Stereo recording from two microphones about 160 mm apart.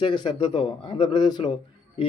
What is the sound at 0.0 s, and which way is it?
A man's voice, 30° left (ahead or behind).